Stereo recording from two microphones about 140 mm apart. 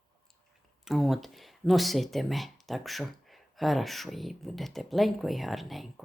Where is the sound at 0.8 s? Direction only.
Centre (ahead or behind).